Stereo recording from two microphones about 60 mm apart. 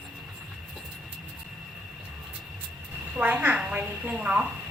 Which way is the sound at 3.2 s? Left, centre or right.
Right.